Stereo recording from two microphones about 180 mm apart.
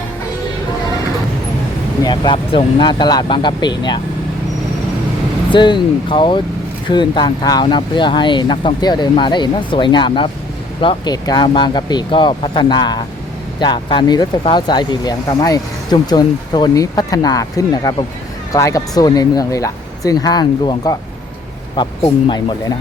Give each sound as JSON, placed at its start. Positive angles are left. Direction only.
{"t": 2.0, "sound": "speech", "side_deg": 25}
{"t": 5.5, "sound": "speech", "side_deg": 25}